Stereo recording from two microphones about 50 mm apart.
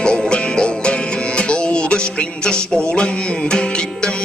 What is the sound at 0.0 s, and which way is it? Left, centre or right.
Music, centre.